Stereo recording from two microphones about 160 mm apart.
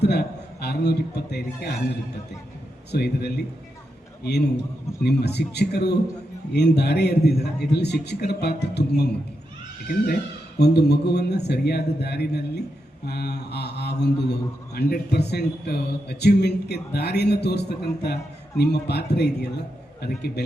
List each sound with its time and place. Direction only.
0.0 s a man's voice: 90° left
2.9 s a man's voice: 90° left
10.6 s a man's voice: 90° left